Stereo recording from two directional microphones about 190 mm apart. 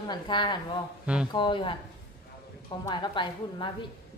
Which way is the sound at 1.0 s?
5° right (ahead or behind).